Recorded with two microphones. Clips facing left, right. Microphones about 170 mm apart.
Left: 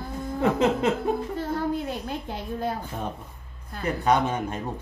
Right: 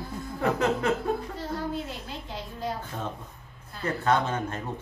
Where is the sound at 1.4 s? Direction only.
55° left (ahead or behind).